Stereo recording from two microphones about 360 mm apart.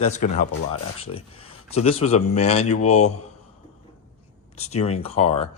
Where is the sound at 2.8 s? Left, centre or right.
Left.